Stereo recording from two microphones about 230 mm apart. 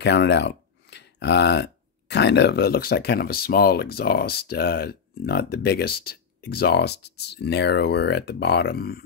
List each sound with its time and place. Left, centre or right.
0.0 s speech: left